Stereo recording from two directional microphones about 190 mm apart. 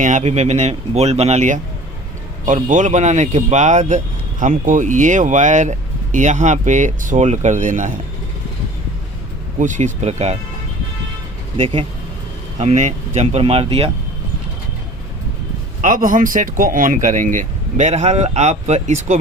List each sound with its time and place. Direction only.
0.0 s speech: 40° right (ahead or behind)
9.6 s speech: 40° right (ahead or behind)
11.5 s speech: 30° right (ahead or behind)
15.8 s speech: 45° right (ahead or behind)